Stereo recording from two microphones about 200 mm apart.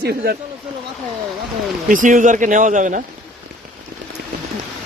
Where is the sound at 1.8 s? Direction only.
40° right (ahead or behind).